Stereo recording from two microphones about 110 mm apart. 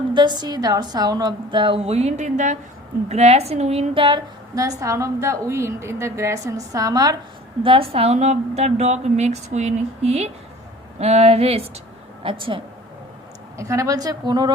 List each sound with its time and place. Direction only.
0.1 s a woman's voice: 45° right (ahead or behind)
1.8 s speech: 75° right (ahead or behind)
3.1 s a woman's voice: 75° right (ahead or behind)
4.5 s a woman's voice: 30° right (ahead or behind)
7.6 s a woman's voice: 55° right (ahead or behind)
12.2 s a woman's voice: 50° right (ahead or behind)
13.6 s a woman's voice: 30° right (ahead or behind)